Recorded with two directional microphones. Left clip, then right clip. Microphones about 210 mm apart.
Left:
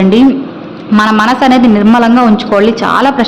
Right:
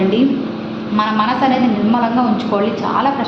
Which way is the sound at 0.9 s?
45° left (ahead or behind).